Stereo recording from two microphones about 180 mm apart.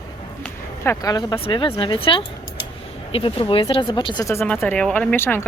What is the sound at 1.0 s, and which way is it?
A woman's voice, 25° left (ahead or behind).